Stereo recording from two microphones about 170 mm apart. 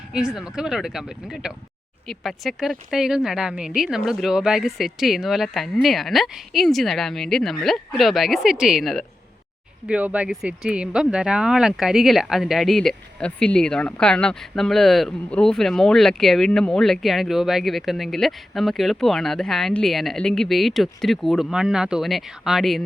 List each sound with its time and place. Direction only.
0.1 s speech: 5° right (ahead or behind)